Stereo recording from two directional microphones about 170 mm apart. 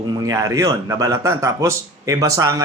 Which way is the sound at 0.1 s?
20° right (ahead or behind).